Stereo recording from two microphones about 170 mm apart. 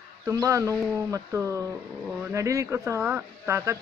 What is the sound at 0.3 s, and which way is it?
Speech, 15° right (ahead or behind).